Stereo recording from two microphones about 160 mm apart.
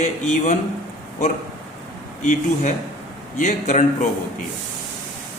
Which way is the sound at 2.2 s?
50° left (ahead or behind).